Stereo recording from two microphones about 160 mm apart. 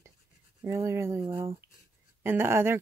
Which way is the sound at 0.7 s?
15° right (ahead or behind).